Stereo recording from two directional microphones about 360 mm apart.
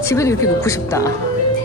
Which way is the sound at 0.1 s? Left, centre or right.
Centre.